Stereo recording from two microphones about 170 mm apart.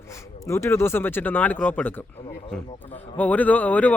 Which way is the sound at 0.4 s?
15° left (ahead or behind).